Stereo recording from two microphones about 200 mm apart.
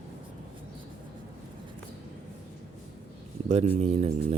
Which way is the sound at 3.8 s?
30° right (ahead or behind).